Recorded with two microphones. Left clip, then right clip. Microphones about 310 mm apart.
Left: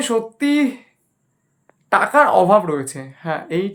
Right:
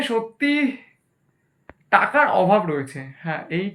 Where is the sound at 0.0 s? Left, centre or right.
Centre.